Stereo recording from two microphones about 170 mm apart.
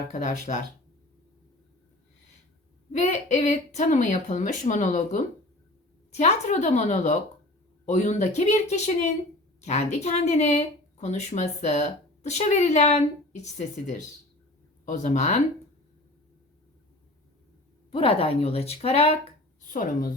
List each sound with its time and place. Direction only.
0.1 s a woman's voice: 50° left (ahead or behind)
2.9 s a woman's voice: 45° left (ahead or behind)
17.9 s speech: 35° left (ahead or behind)
19.7 s a woman's voice: 50° left (ahead or behind)